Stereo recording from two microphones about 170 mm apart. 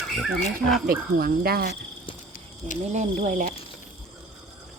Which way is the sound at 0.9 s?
60° right (ahead or behind).